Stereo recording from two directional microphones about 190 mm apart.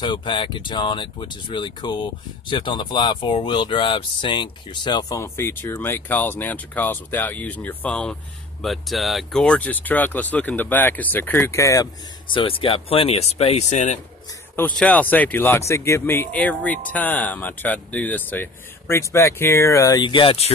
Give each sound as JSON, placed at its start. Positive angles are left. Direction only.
{"t": 0.0, "sound": "speech", "side_deg": 25}
{"t": 14.5, "sound": "speech", "side_deg": 10}